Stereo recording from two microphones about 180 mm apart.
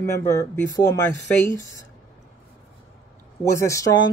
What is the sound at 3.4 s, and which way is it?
Speech, 15° left (ahead or behind).